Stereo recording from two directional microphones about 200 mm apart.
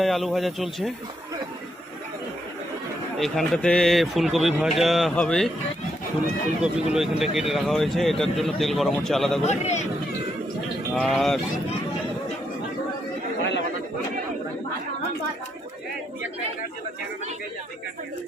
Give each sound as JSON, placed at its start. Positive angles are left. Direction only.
{"t": 0.0, "sound": "speech", "side_deg": 0}
{"t": 3.2, "sound": "speech", "side_deg": 0}
{"t": 6.6, "sound": "speech", "side_deg": -5}
{"t": 9.4, "sound": "speech", "side_deg": 35}
{"t": 10.9, "sound": "speech", "side_deg": 0}